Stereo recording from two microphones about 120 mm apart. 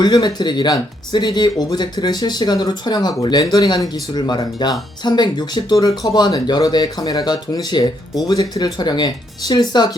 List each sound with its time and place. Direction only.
0.0 s speech: 35° left (ahead or behind)